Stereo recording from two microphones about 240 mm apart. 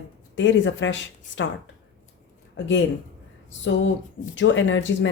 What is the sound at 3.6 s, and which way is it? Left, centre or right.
Speech, left.